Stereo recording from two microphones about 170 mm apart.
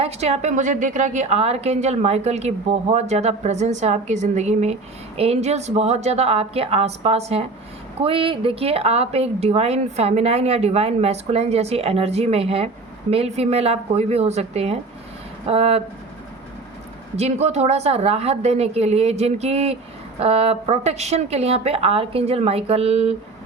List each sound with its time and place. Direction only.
0.0 s a woman's voice: 40° right (ahead or behind)
17.2 s a woman's voice: 40° right (ahead or behind)